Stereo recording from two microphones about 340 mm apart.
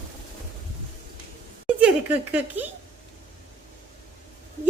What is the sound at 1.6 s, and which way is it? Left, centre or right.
Speech, centre.